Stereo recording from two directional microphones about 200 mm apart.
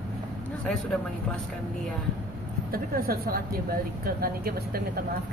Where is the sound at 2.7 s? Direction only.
45° right (ahead or behind).